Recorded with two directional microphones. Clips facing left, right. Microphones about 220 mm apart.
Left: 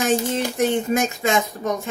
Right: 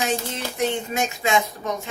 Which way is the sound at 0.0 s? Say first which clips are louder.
Left 6 dB; 45° left (ahead or behind).